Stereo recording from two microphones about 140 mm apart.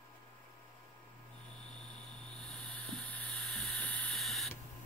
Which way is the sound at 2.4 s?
5° left (ahead or behind).